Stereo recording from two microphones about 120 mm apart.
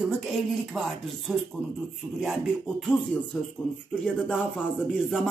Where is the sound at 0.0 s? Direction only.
Centre (ahead or behind).